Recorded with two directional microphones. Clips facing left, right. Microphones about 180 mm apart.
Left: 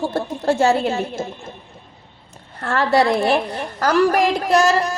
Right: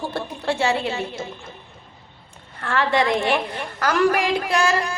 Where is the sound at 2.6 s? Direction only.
40° left (ahead or behind).